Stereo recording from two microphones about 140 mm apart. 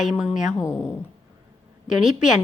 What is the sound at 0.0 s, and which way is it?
Speech, 5° right (ahead or behind).